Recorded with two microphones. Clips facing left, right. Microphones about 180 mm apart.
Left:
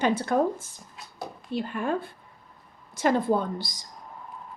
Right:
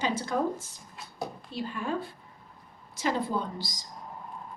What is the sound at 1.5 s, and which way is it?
A woman's voice, 55° left (ahead or behind).